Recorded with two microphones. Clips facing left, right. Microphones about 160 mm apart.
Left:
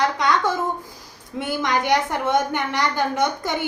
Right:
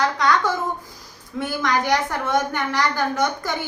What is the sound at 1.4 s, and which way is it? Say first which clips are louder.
A woman's voice: even; 20° left (ahead or behind).